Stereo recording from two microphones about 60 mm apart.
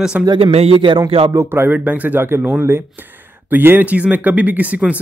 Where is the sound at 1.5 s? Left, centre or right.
Right.